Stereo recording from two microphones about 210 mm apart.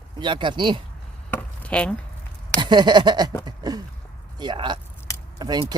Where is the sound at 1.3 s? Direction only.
5° left (ahead or behind).